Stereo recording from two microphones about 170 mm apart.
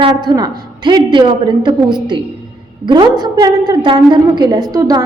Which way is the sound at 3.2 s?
25° right (ahead or behind).